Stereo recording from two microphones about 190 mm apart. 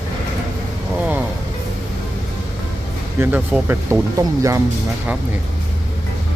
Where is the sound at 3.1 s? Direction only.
10° right (ahead or behind).